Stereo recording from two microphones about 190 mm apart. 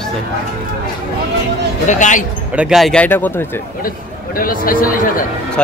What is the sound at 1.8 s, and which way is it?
Speech, 40° left (ahead or behind).